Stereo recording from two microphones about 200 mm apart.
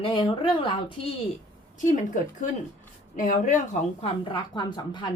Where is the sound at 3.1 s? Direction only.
40° left (ahead or behind); by 5.1 s 20° left (ahead or behind).